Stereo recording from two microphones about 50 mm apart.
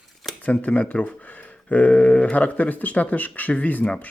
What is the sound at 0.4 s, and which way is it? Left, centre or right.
Speech, left.